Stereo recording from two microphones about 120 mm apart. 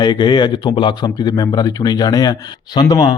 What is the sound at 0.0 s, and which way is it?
Speech, 40° left (ahead or behind).